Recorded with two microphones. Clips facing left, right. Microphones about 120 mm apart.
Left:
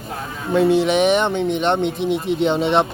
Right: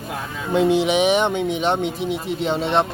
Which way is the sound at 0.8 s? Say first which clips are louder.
Left 1 dB; 10° right (ahead or behind).